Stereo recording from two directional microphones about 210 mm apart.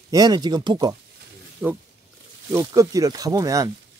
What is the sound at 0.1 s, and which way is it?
Speech, 20° right (ahead or behind).